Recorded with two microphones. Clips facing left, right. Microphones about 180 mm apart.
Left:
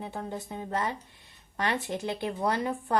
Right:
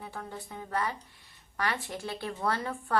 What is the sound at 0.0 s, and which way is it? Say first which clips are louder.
A woman's voice: left 5 dB; 25° left (ahead or behind).